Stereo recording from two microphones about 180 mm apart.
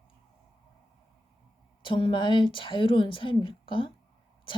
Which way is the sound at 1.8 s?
30° left (ahead or behind).